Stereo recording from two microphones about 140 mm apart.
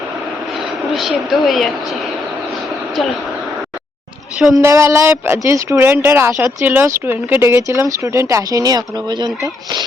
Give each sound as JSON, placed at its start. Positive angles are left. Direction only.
{"t": 0.6, "sound": "speech", "side_deg": 0}
{"t": 4.5, "sound": "speech", "side_deg": -20}